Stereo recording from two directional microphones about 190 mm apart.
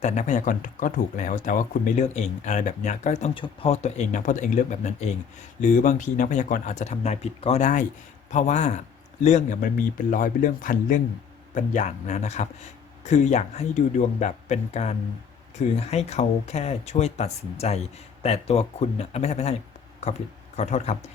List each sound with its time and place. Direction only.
0.0 s speech: 40° left (ahead or behind)
20.6 s speech: 35° left (ahead or behind)